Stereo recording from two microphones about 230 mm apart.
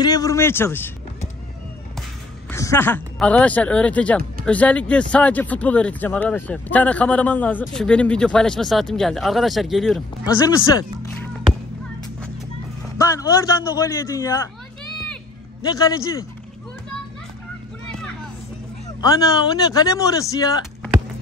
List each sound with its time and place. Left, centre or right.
0.0 s speech: centre
2.5 s speech: centre
10.2 s speech: centre
12.9 s speech: centre
15.6 s speech: centre
19.0 s speech: centre